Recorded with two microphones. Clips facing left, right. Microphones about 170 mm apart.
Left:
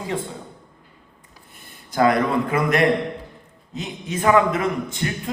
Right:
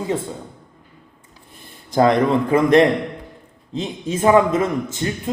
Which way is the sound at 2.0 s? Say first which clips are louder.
Right 3 dB; 30° right (ahead or behind).